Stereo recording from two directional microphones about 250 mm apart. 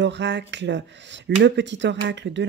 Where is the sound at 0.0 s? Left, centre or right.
Right.